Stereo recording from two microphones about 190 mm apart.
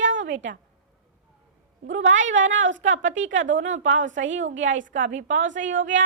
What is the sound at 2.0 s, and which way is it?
A woman's voice, 85° right.